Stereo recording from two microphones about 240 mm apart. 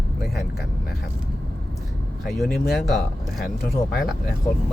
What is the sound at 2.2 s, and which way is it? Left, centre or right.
Speech, centre.